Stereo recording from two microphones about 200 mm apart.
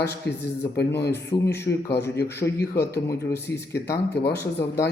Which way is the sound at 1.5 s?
55° left (ahead or behind).